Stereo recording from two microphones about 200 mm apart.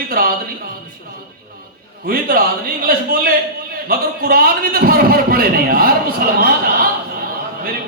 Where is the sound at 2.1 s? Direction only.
50° right (ahead or behind).